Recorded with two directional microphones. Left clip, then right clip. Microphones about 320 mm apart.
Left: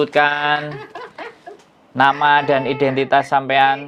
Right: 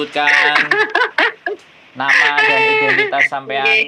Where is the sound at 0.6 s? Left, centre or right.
Right.